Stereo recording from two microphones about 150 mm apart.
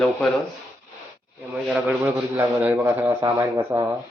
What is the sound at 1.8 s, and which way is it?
A man's voice, 10° right (ahead or behind).